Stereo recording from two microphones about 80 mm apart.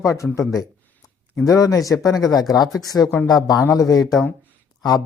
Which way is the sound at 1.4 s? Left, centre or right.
Left.